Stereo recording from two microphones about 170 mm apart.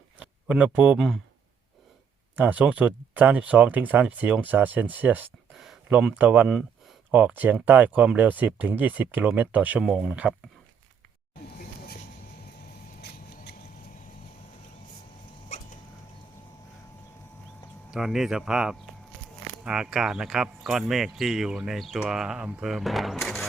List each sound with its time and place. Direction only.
0.2 s speech: 5° right (ahead or behind)
2.3 s speech: 10° right (ahead or behind)
13.0 s a sound: 75° left (ahead or behind)
15.4 s a sound: 40° left (ahead or behind)
17.9 s speech: centre (ahead or behind)
23.2 s music: centre (ahead or behind)